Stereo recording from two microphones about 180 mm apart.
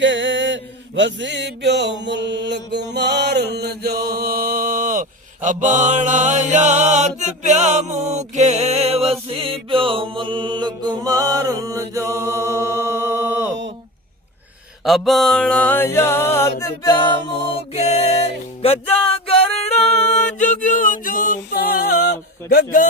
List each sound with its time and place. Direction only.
0.0 s mantra: 90° right; by 5.0 s 45° right (ahead or behind)
5.5 s chant: 45° right (ahead or behind)
9.3 s mantra: 30° right (ahead or behind)
10.9 s chant: 20° right (ahead or behind)
14.8 s a sound: centre (ahead or behind); by 17.3 s 25° left (ahead or behind)
17.7 s music: 35° left (ahead or behind)
20.4 s a sound: 45° left (ahead or behind)